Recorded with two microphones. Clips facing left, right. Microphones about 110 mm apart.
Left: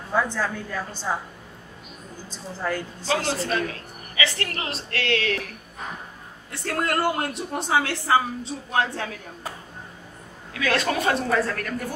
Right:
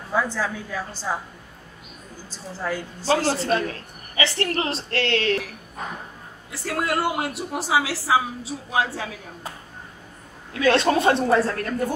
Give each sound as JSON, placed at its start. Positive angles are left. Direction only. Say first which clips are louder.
{"t": 0.1, "sound": "a woman's voice", "louder": "even", "side_deg": -5}
{"t": 2.6, "sound": "a woman's voice", "louder": "even", "side_deg": -5}
{"t": 3.0, "sound": "a woman's voice", "louder": "right 6 dB", "side_deg": -40}
{"t": 6.5, "sound": "a woman's voice", "louder": "even", "side_deg": -5}
{"t": 10.5, "sound": "a woman's voice", "louder": "right 5 dB", "side_deg": -30}